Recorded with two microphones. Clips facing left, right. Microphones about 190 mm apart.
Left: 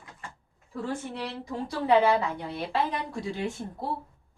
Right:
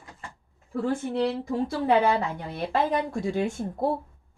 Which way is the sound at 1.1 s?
50° right (ahead or behind).